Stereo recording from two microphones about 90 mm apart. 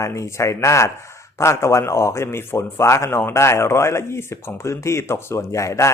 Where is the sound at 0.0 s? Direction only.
35° left (ahead or behind).